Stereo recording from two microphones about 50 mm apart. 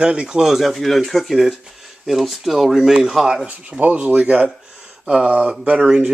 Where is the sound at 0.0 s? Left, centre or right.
Centre.